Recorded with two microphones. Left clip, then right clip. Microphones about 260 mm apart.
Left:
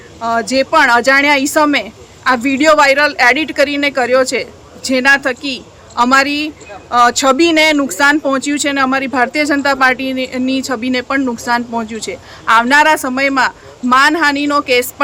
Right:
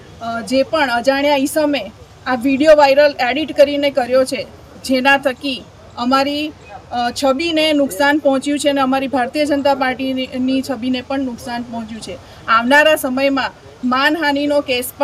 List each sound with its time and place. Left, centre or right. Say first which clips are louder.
0.2 s speech: left 4 dB; centre